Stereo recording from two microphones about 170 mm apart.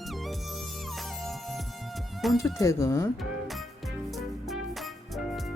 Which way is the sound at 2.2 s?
Centre (ahead or behind).